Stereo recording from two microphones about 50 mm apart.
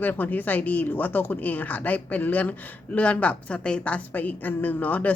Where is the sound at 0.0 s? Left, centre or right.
Left.